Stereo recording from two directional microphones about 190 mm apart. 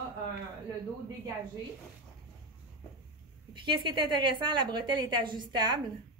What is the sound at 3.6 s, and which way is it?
A woman's voice, 25° right (ahead or behind).